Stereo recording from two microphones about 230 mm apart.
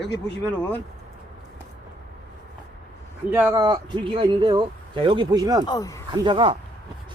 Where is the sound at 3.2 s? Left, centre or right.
Centre.